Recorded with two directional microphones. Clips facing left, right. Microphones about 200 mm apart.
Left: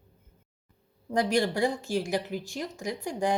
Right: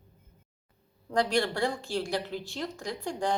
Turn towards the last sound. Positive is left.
turn(degrees=15)  # may be behind; listen again after turning